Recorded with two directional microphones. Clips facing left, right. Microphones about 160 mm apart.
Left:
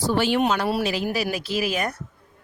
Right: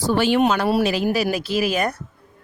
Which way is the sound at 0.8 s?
55° right (ahead or behind).